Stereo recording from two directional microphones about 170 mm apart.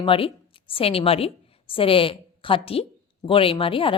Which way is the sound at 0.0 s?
30° left (ahead or behind).